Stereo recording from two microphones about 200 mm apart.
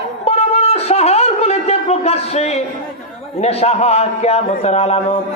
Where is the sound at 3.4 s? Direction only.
30° left (ahead or behind).